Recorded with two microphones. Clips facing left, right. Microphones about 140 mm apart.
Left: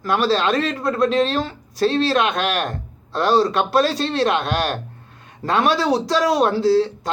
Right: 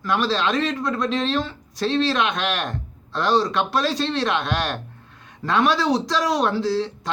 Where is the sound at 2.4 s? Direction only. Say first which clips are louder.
Left 3 dB; 5° left (ahead or behind).